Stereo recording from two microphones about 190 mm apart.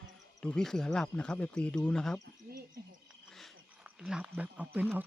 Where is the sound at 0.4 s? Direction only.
5° left (ahead or behind).